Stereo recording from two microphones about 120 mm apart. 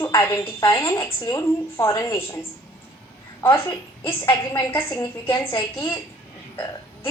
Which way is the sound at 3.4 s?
20° left (ahead or behind).